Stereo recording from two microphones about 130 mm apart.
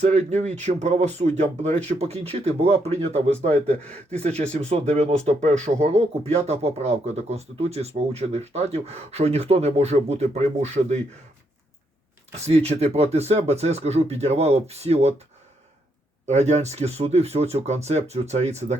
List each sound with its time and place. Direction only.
0.0 s speech: 60° right (ahead or behind)
3.5 s speech: 10° left (ahead or behind)
4.2 s speech: 55° right (ahead or behind)
12.5 s speech: 55° right (ahead or behind)
16.2 s speech: 60° right (ahead or behind)